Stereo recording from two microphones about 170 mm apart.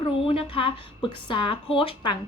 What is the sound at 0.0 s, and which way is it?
A woman's voice, 35° left (ahead or behind).